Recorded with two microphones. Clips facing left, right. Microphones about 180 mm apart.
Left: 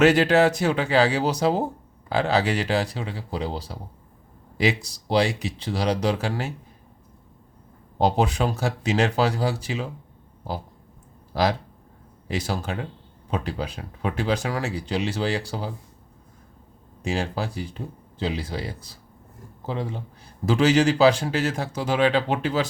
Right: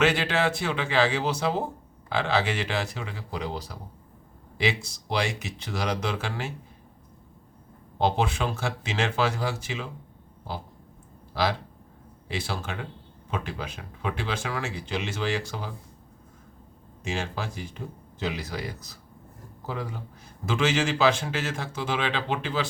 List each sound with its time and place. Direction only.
0.0 s speech: 40° left (ahead or behind)
7.9 s speech: 40° left (ahead or behind)
12.3 s speech: 40° left (ahead or behind)
17.0 s speech: 35° left (ahead or behind)
20.4 s speech: 35° left (ahead or behind)